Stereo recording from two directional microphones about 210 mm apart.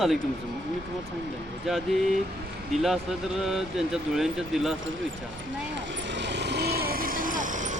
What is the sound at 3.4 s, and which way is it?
Speech, centre (ahead or behind).